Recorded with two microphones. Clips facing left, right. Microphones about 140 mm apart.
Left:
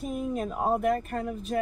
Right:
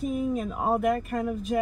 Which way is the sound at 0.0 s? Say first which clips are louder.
Right 3 dB; centre (ahead or behind).